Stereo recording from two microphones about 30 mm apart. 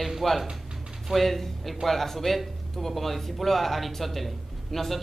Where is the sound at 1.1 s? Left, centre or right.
Centre.